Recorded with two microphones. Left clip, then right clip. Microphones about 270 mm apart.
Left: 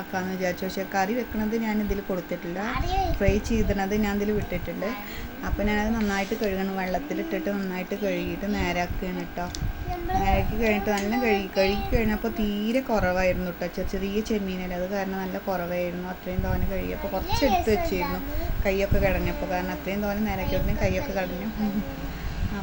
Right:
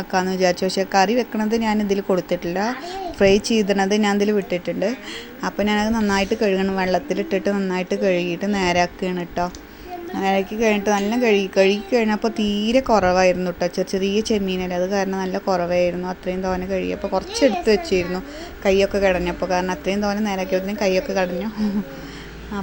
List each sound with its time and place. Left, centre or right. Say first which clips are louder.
0.1 s a woman's voice: right 10 dB; right